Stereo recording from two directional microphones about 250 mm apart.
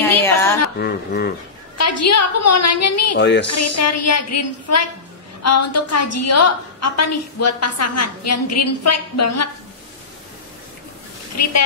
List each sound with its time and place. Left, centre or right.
0.2 s a sound: centre
0.7 s speech: left
1.8 s a woman's voice: left
3.2 s speech: left
3.4 s a woman's voice: left
11.4 s a woman's voice: left